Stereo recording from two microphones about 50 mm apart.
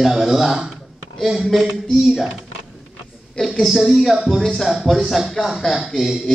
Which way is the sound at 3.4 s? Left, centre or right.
Centre.